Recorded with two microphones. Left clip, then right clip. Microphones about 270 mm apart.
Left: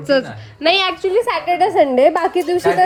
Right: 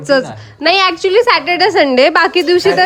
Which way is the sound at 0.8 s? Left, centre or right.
Right.